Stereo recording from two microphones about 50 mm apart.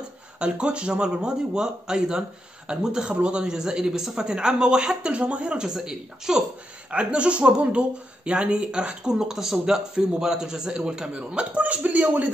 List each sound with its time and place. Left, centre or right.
0.5 s a man's voice: centre
5.6 s a man's voice: centre
6.9 s a man's voice: right
11.5 s speech: right